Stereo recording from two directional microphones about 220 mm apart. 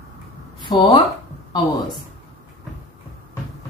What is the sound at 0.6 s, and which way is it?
Speech, 20° left (ahead or behind).